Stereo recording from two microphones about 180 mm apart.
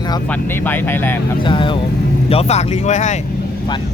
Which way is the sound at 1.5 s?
25° left (ahead or behind).